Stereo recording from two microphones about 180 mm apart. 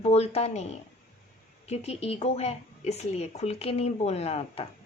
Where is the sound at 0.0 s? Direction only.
35° left (ahead or behind).